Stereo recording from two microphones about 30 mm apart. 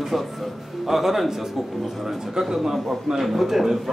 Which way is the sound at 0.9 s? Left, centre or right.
Centre.